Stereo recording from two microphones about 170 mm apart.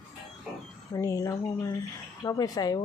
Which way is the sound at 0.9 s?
20° left (ahead or behind).